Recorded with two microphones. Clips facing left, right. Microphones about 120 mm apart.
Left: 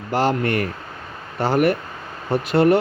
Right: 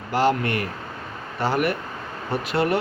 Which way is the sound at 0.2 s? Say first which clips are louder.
Left 1 dB; 45° left (ahead or behind).